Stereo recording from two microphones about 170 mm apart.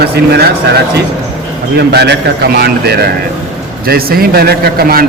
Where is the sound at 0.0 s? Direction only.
70° right (ahead or behind).